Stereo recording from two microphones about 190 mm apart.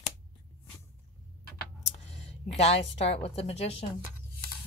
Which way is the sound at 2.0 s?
35° left (ahead or behind).